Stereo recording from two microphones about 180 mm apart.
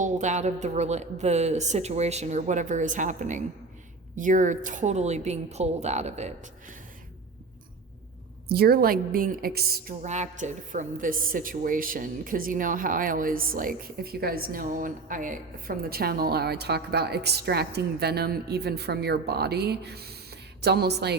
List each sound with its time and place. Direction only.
0.0 s speech: 40° right (ahead or behind)
8.4 s a woman's voice: 60° right (ahead or behind)
10.0 s a woman's voice: 40° right (ahead or behind); by 21.2 s 65° right (ahead or behind)